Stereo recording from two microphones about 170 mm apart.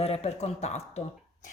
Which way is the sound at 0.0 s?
35° left (ahead or behind).